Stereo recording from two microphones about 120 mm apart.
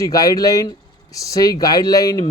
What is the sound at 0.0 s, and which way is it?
A man's voice, 30° left (ahead or behind).